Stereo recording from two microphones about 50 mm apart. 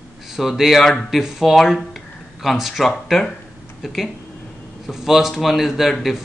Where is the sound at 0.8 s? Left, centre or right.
Centre.